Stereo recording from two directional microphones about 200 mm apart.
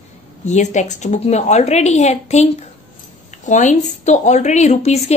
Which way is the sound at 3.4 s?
35° left (ahead or behind).